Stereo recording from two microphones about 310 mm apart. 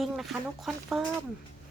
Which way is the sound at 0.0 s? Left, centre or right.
Centre.